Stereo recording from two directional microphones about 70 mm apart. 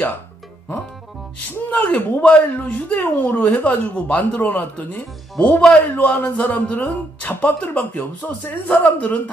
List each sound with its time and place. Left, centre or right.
1.7 s speech: left
5.6 s a man's voice: centre
5.9 s speech: left